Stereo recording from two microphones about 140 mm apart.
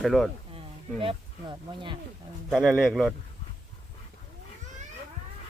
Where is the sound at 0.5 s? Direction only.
40° right (ahead or behind).